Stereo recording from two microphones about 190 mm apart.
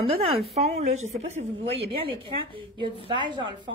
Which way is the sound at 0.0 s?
30° right (ahead or behind).